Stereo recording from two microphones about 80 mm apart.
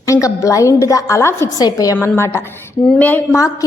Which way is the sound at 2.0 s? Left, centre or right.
Left.